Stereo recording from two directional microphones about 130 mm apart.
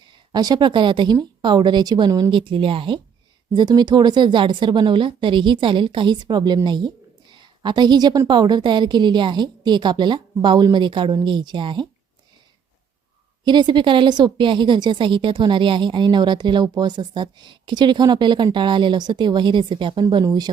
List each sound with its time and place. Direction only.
0.3 s a woman's voice: 30° right (ahead or behind)
2.3 s a woman's voice: 40° right (ahead or behind)
13.4 s a woman's voice: 35° right (ahead or behind)